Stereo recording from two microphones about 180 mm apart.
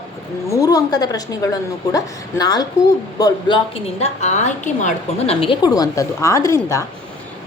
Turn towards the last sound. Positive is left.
turn(degrees=15)  # may be behind; listen again after turning